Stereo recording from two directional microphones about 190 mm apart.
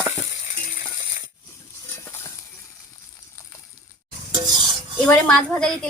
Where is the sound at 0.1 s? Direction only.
40° left (ahead or behind).